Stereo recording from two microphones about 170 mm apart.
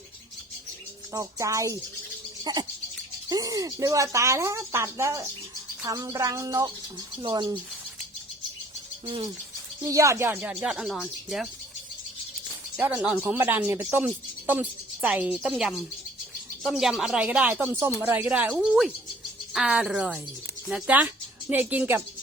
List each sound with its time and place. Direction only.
1.1 s speech: 20° right (ahead or behind)
2.4 s bird: 25° right (ahead or behind)
3.2 s speech: 20° right (ahead or behind)
9.0 s speech: 30° right (ahead or behind)
9.8 s speech: 20° right (ahead or behind); by 11.4 s centre (ahead or behind)
12.7 s speech: 5° right (ahead or behind)